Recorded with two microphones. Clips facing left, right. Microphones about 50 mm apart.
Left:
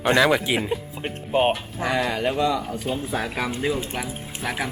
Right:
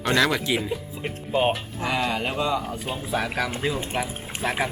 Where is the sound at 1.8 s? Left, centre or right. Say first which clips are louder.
Left 2 dB; left.